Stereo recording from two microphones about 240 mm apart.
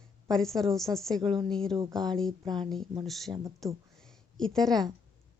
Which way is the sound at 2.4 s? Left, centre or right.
Centre.